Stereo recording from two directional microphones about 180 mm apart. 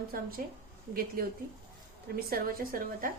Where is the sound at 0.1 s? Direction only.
55° right (ahead or behind).